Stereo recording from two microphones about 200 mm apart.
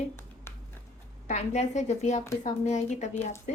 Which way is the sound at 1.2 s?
35° left (ahead or behind).